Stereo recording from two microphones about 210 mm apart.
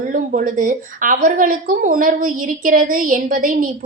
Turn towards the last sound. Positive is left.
turn(degrees=-40)  # may be behind; listen again after turning